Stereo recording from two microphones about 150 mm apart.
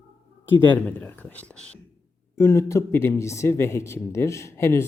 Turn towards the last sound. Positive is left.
turn(degrees=15)  # may be behind; listen again after turning